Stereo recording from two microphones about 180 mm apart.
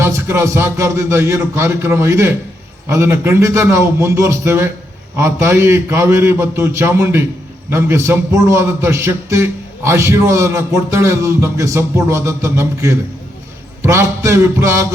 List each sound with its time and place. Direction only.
0.0 s a man's voice: 15° right (ahead or behind)